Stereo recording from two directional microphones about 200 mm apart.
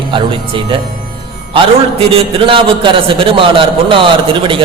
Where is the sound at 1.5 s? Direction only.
30° right (ahead or behind).